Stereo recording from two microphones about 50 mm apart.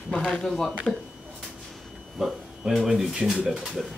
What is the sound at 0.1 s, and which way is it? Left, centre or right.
Speech, left.